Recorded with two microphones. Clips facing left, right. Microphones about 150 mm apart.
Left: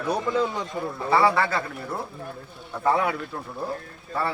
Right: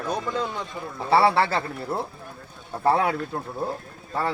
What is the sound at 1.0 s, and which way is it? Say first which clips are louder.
A man's voice: right 2 dB; 30° right (ahead or behind).